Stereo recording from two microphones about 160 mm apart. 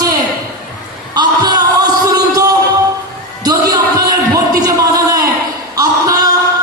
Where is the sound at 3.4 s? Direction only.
25° right (ahead or behind).